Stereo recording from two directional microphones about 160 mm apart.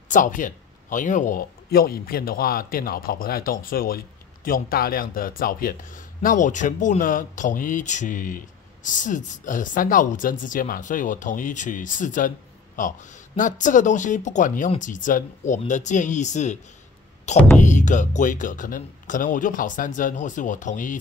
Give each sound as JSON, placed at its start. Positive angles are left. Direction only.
{"t": 0.1, "sound": "speech", "side_deg": 55}
{"t": 17.6, "sound": "speech", "side_deg": 50}